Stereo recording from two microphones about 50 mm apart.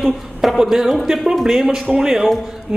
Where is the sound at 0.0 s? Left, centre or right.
Centre.